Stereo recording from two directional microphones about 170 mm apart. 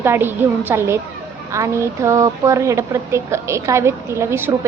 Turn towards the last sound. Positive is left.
turn(degrees=-15)  # may be behind; listen again after turning